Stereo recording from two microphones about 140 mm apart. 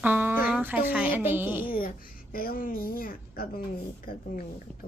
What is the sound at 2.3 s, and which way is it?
A woman's voice, 90° left.